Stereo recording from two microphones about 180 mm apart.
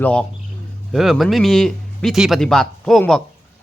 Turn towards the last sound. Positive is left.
turn(degrees=0)  # may be behind; listen again after turning